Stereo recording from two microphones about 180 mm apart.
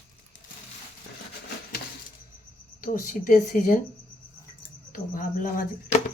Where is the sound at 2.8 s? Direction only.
45° left (ahead or behind).